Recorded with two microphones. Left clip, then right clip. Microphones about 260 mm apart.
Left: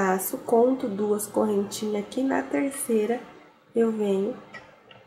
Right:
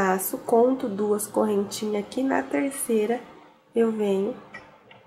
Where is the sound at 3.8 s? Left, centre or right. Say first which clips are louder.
Right 1 dB; centre.